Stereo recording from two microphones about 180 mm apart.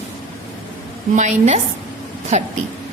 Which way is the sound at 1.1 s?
40° right (ahead or behind).